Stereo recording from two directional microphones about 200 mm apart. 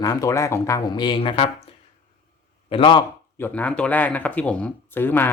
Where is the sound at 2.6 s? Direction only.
25° left (ahead or behind).